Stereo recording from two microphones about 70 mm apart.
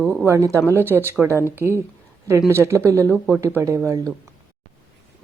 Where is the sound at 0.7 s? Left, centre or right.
Right.